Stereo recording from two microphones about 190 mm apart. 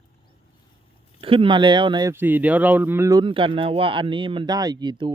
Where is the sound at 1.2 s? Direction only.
30° right (ahead or behind).